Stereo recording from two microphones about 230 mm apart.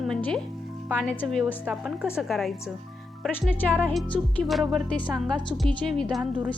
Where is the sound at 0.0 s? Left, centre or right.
Centre.